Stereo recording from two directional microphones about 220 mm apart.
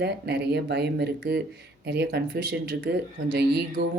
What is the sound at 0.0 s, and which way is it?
Speech, 50° right (ahead or behind).